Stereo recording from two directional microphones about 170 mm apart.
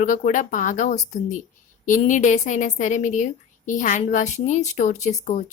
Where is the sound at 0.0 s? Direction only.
45° left (ahead or behind).